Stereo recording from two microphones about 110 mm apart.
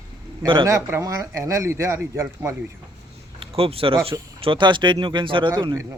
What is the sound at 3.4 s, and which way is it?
A man's voice, 60° right (ahead or behind).